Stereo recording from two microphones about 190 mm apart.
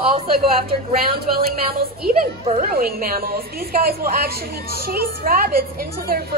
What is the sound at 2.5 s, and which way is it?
A woman's voice, 45° right (ahead or behind).